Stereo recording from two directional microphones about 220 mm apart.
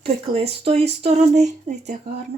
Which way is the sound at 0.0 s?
25° right (ahead or behind).